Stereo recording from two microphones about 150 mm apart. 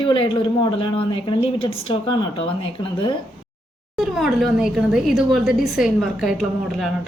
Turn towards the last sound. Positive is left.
turn(degrees=0)  # may be behind; listen again after turning